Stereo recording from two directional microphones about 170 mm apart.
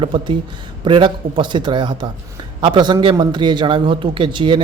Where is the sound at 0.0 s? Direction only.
30° right (ahead or behind).